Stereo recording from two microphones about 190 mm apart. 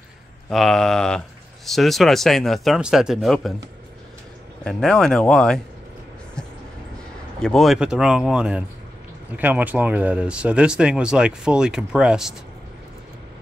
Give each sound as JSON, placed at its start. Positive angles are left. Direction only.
{"t": 0.5, "sound": "speech", "side_deg": 0}
{"t": 4.6, "sound": "speech", "side_deg": 5}
{"t": 7.3, "sound": "speech", "side_deg": 0}